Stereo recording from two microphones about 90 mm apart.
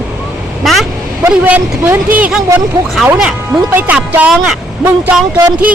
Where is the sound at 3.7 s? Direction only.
20° right (ahead or behind).